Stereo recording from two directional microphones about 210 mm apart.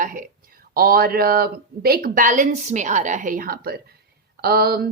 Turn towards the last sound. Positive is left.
turn(degrees=-45)  # may be behind; listen again after turning